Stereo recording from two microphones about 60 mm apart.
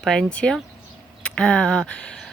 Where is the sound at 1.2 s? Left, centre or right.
Centre.